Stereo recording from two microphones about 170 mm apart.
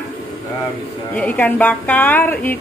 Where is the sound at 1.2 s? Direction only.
10° left (ahead or behind).